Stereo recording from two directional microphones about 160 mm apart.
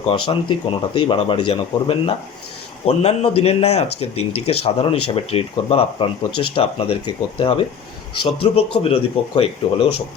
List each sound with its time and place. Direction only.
0.1 s speech: 30° left (ahead or behind)